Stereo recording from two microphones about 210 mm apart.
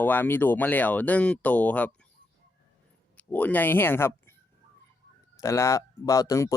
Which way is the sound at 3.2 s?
10° left (ahead or behind).